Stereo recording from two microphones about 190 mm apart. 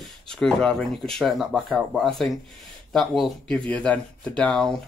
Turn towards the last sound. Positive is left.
turn(degrees=5)  # may be behind; listen again after turning